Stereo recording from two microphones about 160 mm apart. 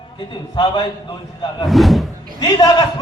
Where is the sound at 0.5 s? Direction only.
30° left (ahead or behind).